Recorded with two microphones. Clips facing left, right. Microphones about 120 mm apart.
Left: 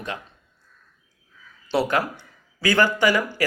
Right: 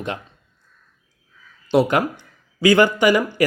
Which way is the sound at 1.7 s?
15° right (ahead or behind).